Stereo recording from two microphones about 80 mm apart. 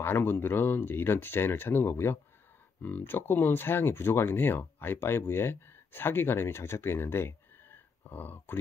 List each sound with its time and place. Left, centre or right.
0.0 s speech: left